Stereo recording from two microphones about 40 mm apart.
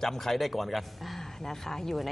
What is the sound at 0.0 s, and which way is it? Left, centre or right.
A woman's voice, centre.